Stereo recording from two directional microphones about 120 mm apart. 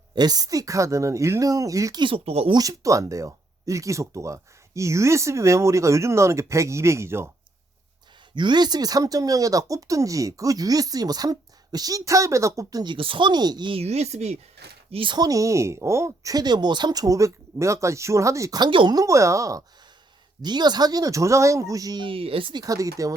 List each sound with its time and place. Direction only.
0.1 s speech: 35° right (ahead or behind); by 2.5 s 55° right (ahead or behind)
2.5 s speech: 30° right (ahead or behind)
8.4 s speech: 40° right (ahead or behind)
12.8 s speech: 45° right (ahead or behind)
13.7 s speech: 65° right (ahead or behind)
14.9 s speech: 40° right (ahead or behind)
18.9 s speech: 25° right (ahead or behind)
22.0 s speech: 50° right (ahead or behind)
22.6 s speech: 30° right (ahead or behind)